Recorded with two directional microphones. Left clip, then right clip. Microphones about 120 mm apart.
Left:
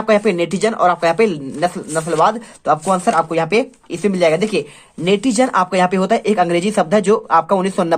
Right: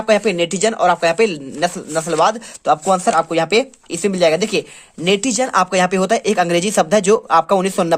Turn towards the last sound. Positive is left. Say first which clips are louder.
# right 1 dB
turn(degrees=-30)  # may be behind; listen again after turning